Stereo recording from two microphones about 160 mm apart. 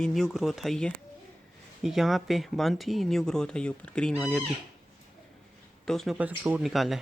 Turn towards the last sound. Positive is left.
turn(degrees=0)  # may be behind; listen again after turning